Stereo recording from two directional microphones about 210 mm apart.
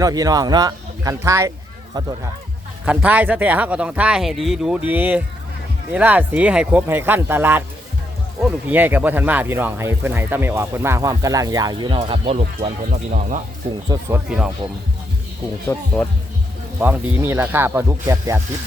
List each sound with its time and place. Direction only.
0.0 s speech: 15° right (ahead or behind)
2.8 s speech: 5° right (ahead or behind); by 13.4 s 35° right (ahead or behind)
13.8 s speech: 20° right (ahead or behind)
14.3 s speech: 5° right (ahead or behind)
16.8 s speech: 10° right (ahead or behind)